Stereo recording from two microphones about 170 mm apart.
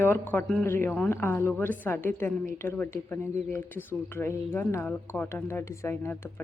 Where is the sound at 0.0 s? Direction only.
15° left (ahead or behind).